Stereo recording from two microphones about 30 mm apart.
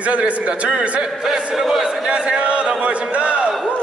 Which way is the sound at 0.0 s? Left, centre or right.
Right.